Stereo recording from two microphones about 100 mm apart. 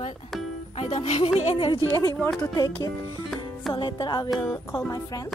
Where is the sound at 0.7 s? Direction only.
90° left.